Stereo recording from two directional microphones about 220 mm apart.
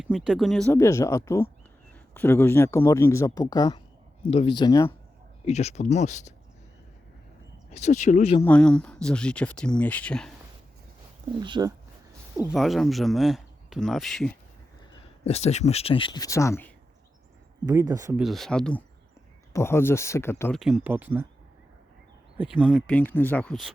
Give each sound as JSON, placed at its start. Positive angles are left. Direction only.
{"t": 0.0, "sound": "speech", "side_deg": 0}
{"t": 0.7, "sound": "speech", "side_deg": 15}
{"t": 5.5, "sound": "speech", "side_deg": 30}
{"t": 7.7, "sound": "speech", "side_deg": 30}
{"t": 8.4, "sound": "speech", "side_deg": 5}
{"t": 11.3, "sound": "speech", "side_deg": -20}
{"t": 12.5, "sound": "speech", "side_deg": 0}
{"t": 15.2, "sound": "speech", "side_deg": 30}
{"t": 17.7, "sound": "speech", "side_deg": -15}
{"t": 18.2, "sound": "speech", "side_deg": 0}
{"t": 20.4, "sound": "speech", "side_deg": 0}
{"t": 22.4, "sound": "speech", "side_deg": -5}
{"t": 22.9, "sound": "speech", "side_deg": 5}